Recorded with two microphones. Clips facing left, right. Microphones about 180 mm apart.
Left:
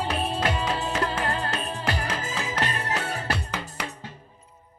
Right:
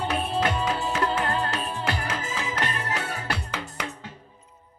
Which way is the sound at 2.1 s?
35° left (ahead or behind).